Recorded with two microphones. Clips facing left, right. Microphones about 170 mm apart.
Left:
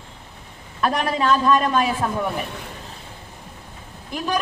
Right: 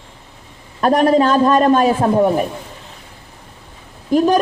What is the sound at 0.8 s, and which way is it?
A man's voice, 40° right (ahead or behind).